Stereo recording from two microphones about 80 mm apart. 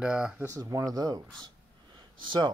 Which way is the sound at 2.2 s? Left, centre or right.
Right.